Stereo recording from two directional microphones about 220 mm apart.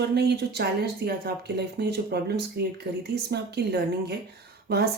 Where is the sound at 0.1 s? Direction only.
50° right (ahead or behind).